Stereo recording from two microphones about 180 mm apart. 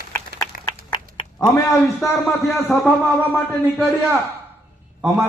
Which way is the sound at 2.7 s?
Centre (ahead or behind).